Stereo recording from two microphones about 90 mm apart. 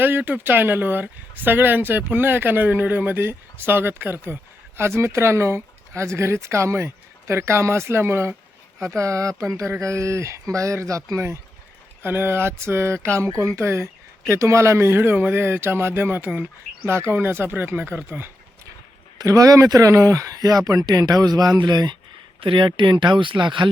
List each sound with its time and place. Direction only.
0.0 s speech: 20° right (ahead or behind)
9.0 s speech: 35° right (ahead or behind)
12.0 s speech: 25° right (ahead or behind)
19.2 s speech: 40° right (ahead or behind); by 21.9 s 55° right (ahead or behind)
22.4 s speech: 75° right (ahead or behind)